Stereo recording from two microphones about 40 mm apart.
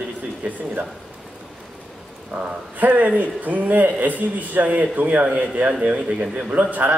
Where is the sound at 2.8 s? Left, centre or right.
Right.